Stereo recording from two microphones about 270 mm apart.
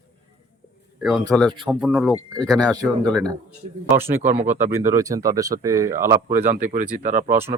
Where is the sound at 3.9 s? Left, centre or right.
Centre.